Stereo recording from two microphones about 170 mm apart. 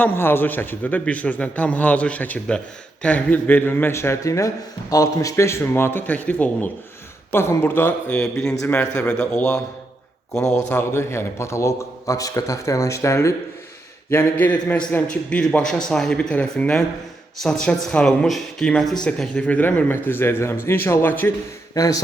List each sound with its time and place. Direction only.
0.0 s a man's voice: 10° left (ahead or behind)
10.7 s a man's voice: 15° left (ahead or behind)